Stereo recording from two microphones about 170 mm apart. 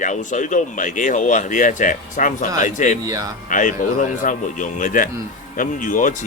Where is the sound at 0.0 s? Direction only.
45° left (ahead or behind).